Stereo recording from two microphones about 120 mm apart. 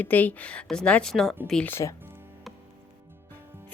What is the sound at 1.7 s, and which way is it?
Speech, 20° left (ahead or behind).